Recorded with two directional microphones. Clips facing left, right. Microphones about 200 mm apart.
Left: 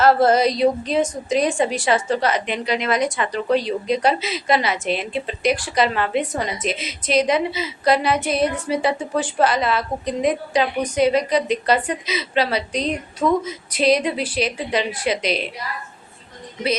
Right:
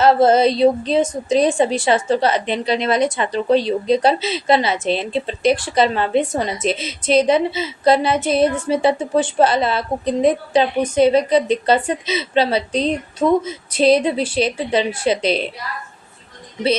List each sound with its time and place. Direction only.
0.0 s a woman's voice: 25° right (ahead or behind)